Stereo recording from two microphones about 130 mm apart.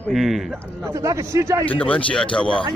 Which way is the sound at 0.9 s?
25° right (ahead or behind).